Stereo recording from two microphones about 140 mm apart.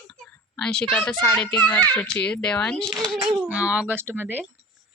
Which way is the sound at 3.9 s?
15° right (ahead or behind).